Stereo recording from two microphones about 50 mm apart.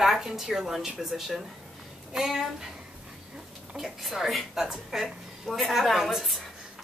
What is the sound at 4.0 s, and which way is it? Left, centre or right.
A woman's voice, centre.